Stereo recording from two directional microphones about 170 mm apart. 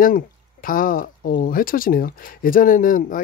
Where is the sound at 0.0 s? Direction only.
55° left (ahead or behind).